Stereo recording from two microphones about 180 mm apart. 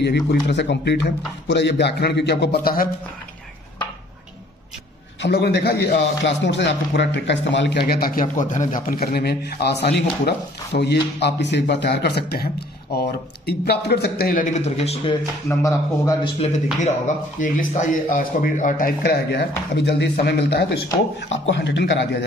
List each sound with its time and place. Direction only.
0.0 s a man's voice: 70° left (ahead or behind)
5.2 s a man's voice: 70° left (ahead or behind); by 15.1 s 35° left (ahead or behind)
15.4 s speech: 15° left (ahead or behind)
16.3 s speech: 35° left (ahead or behind)
17.4 s speech: 50° left (ahead or behind)
19.7 s a man's voice: 70° left (ahead or behind)
21.5 s a man's voice: 75° left (ahead or behind)